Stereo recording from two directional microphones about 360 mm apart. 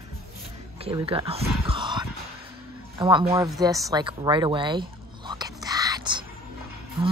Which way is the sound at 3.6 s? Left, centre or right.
Centre.